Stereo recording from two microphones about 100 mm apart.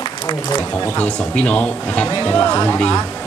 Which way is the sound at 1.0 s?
10° left (ahead or behind).